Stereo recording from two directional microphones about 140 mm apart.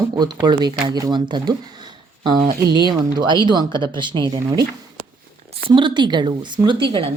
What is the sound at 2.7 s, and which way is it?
Speech, 35° right (ahead or behind).